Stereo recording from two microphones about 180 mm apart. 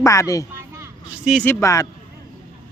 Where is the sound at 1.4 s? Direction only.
20° left (ahead or behind).